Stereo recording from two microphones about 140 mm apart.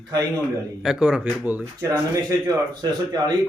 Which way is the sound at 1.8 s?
25° right (ahead or behind).